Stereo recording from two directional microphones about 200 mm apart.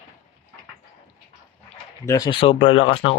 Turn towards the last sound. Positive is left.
turn(degrees=25)  # may be behind; listen again after turning